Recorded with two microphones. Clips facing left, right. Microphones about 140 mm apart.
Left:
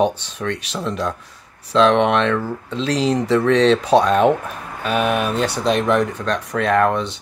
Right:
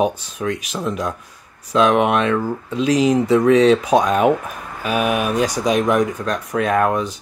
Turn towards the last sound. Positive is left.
turn(degrees=-10)  # may be behind; listen again after turning